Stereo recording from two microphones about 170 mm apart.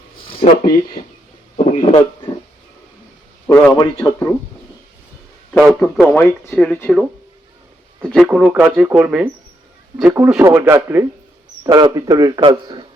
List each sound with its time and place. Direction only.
0.3 s a sound: 30° left (ahead or behind)
1.5 s speech: 35° left (ahead or behind)
3.4 s a man's voice: 10° left (ahead or behind)
3.7 s a man's voice: 25° left (ahead or behind)
5.5 s speech: centre (ahead or behind)
8.1 s a man's voice: 5° right (ahead or behind); by 12.8 s 25° right (ahead or behind)